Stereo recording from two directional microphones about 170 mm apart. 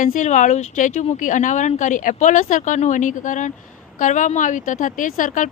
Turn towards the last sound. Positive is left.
turn(degrees=50)  # may be behind; listen again after turning